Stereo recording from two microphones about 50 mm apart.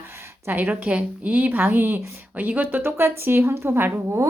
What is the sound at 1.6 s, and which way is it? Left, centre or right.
Speech, right.